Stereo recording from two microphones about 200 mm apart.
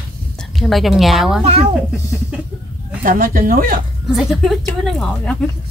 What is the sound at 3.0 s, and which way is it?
Speech, 45° right (ahead or behind).